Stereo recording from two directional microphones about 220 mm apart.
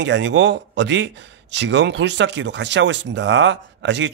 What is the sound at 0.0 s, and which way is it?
A man's voice, 55° right (ahead or behind).